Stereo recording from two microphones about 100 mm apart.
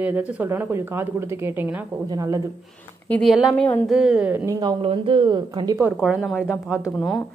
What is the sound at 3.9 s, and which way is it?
Speech, 10° right (ahead or behind).